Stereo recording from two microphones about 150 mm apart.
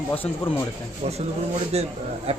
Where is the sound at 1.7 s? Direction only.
45° right (ahead or behind).